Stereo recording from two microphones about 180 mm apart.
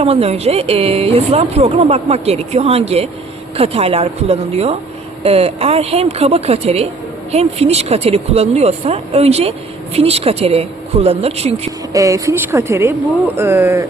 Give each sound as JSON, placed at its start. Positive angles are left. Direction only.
{"t": 0.0, "sound": "speech", "side_deg": -35}
{"t": 11.9, "sound": "speech", "side_deg": -20}